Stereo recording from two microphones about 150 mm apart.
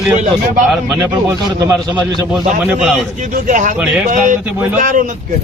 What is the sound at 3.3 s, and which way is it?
Speech, 60° right (ahead or behind).